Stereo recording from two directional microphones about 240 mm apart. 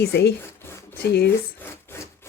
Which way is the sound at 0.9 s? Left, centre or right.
Left.